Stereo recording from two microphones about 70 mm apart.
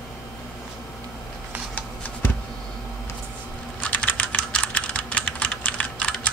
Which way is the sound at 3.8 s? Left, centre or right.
Left.